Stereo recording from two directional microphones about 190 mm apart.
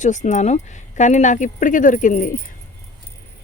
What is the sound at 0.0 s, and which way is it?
Speech, 40° left (ahead or behind).